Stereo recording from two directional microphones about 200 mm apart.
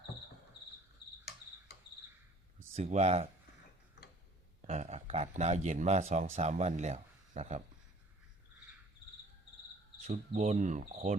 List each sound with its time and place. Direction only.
2.7 s speech: 35° right (ahead or behind)
4.6 s speech: 35° right (ahead or behind)
10.1 s speech: 35° right (ahead or behind)